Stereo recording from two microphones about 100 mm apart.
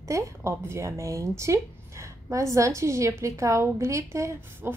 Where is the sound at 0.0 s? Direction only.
30° right (ahead or behind).